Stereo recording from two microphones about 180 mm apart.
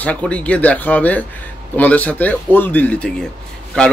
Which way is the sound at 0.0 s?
5° left (ahead or behind).